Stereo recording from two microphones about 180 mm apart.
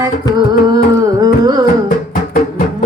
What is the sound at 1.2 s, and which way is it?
Carnatic music, 20° right (ahead or behind).